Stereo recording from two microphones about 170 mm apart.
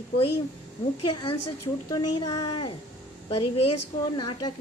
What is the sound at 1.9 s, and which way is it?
Speech, 25° left (ahead or behind).